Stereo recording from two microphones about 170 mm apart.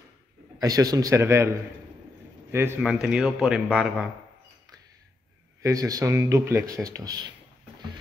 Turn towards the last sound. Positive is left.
turn(degrees=-25)  # may be behind; listen again after turning